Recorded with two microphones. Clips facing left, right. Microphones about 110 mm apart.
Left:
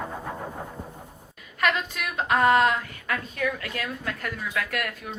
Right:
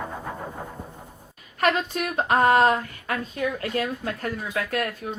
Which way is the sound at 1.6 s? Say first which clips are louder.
Right 3 dB; 40° right (ahead or behind).